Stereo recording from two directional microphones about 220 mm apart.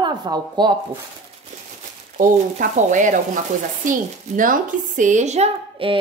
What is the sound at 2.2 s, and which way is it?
A woman's voice, 35° right (ahead or behind).